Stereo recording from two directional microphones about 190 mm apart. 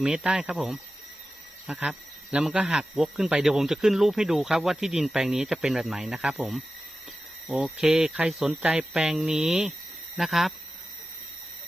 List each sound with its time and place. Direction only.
0.0 s speech: 5° right (ahead or behind)